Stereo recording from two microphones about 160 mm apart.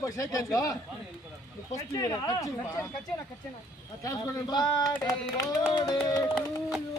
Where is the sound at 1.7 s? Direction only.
20° left (ahead or behind).